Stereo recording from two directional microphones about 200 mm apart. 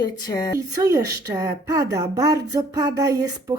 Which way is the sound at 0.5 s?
15° right (ahead or behind).